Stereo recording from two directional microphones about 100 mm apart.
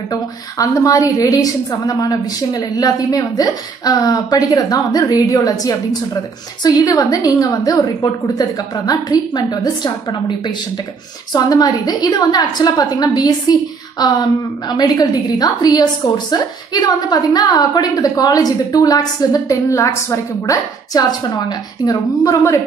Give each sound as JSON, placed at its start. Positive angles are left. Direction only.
{"t": 0.1, "sound": "a woman's voice", "side_deg": 35}
{"t": 6.8, "sound": "a woman's voice", "side_deg": 35}
{"t": 11.3, "sound": "a woman's voice", "side_deg": 40}